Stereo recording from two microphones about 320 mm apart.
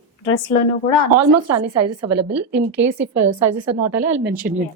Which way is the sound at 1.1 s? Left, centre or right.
Right.